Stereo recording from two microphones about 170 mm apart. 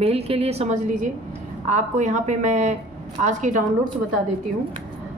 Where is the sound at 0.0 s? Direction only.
35° right (ahead or behind).